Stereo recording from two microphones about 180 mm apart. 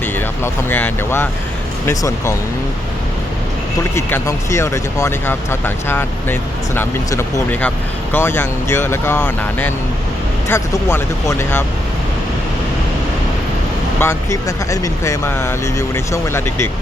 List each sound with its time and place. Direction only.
0.0 s speech: 10° left (ahead or behind)
3.9 s speech: 15° left (ahead or behind)
14.0 s speech: 15° left (ahead or behind)